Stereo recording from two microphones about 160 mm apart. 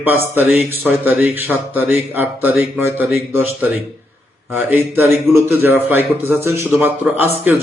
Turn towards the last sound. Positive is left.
turn(degrees=-10)  # may be behind; listen again after turning